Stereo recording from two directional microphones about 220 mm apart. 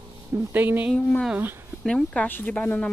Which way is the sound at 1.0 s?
5° left (ahead or behind).